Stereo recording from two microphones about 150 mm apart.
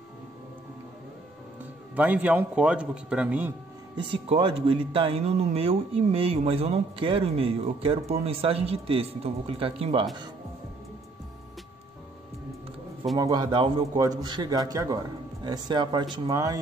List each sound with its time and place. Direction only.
2.0 s a man's voice: 10° right (ahead or behind)
3.9 s speech: 35° right (ahead or behind)
13.2 s a man's voice: 25° right (ahead or behind)